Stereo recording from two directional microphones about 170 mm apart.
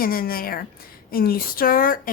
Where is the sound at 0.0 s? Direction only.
60° left (ahead or behind).